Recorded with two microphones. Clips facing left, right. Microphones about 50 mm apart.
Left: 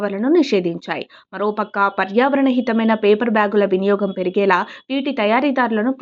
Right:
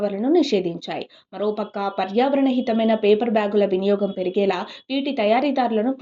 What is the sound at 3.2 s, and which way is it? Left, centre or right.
A woman's voice, left.